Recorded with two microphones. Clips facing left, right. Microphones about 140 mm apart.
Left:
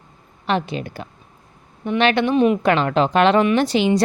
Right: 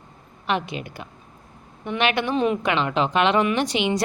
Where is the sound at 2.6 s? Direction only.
40° left (ahead or behind).